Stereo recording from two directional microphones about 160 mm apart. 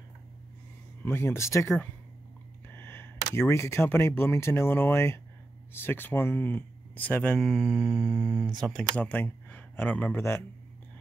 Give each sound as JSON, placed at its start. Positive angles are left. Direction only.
{"t": 1.0, "sound": "speech", "side_deg": 15}
{"t": 2.7, "sound": "speech", "side_deg": 15}